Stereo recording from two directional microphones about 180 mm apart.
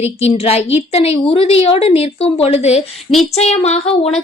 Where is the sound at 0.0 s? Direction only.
35° left (ahead or behind).